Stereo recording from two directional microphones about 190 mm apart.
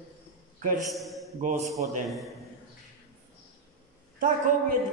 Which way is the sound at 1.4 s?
40° right (ahead or behind).